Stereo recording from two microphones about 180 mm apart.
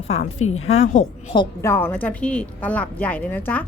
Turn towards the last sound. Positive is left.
turn(degrees=10)  # may be behind; listen again after turning